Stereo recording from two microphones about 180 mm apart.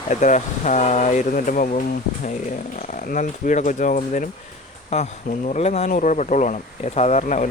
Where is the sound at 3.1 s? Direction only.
45° left (ahead or behind).